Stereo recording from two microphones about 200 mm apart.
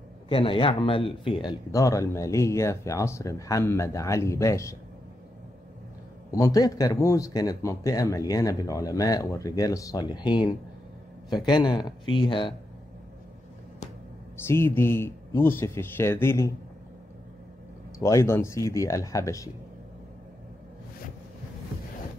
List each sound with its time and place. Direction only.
0.3 s speech: 25° left (ahead or behind)
6.3 s speech: 20° left (ahead or behind)
14.4 s speech: 10° left (ahead or behind)
18.0 s speech: 15° left (ahead or behind)